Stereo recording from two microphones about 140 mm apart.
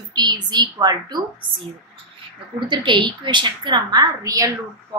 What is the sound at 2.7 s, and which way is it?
A woman's voice, 35° right (ahead or behind).